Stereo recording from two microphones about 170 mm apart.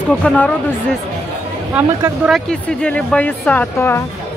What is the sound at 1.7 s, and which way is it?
Speech, 10° right (ahead or behind).